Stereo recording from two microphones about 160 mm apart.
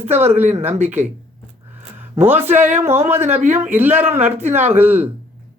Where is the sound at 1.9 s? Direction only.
15° right (ahead or behind).